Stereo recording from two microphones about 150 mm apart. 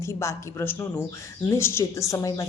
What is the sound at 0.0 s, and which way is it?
A woman's voice, 20° left (ahead or behind).